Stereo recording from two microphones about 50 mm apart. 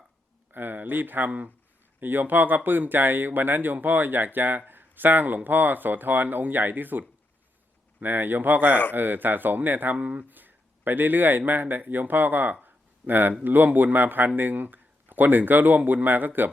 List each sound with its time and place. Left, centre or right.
0.5 s speech: right
8.0 s speech: right
12.6 s a sound: right
13.4 s speech: right